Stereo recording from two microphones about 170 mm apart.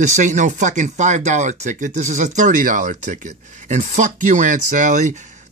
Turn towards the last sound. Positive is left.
turn(degrees=-45)  # may be behind; listen again after turning